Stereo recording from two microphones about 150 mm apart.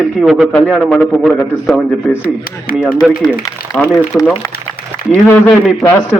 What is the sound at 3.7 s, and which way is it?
A man's voice, 5° left (ahead or behind).